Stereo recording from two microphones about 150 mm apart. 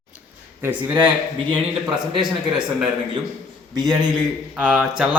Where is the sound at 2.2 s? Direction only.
5° right (ahead or behind).